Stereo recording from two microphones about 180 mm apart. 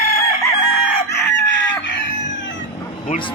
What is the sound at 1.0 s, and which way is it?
Chicken, 70° left (ahead or behind).